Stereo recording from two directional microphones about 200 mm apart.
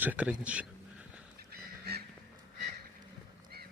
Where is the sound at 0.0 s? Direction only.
5° right (ahead or behind).